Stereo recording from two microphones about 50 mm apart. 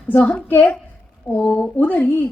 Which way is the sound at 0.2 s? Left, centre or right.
Left.